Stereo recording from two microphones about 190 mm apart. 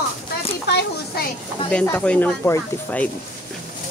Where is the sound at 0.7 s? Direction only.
60° left (ahead or behind).